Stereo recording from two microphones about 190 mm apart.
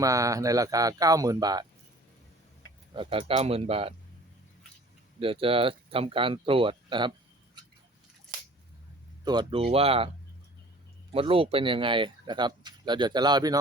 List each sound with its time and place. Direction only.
0.0 s speech: 15° right (ahead or behind)
2.9 s speech: 25° right (ahead or behind)
5.2 s speech: 30° right (ahead or behind)
9.2 s speech: 25° right (ahead or behind)
11.1 s speech: 30° right (ahead or behind)